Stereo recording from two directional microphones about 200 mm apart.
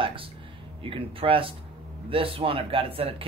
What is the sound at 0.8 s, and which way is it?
Speech, 25° right (ahead or behind).